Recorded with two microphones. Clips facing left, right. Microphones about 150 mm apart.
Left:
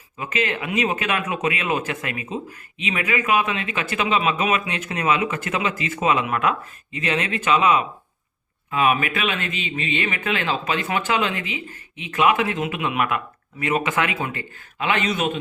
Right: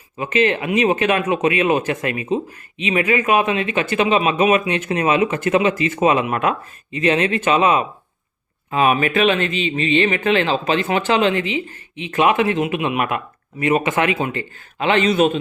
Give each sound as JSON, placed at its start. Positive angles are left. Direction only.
{"t": 0.2, "sound": "speech", "side_deg": -25}